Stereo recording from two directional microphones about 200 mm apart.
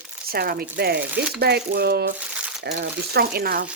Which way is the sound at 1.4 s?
55° right (ahead or behind).